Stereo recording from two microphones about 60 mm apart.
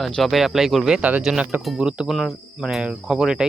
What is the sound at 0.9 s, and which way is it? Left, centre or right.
Speech, right.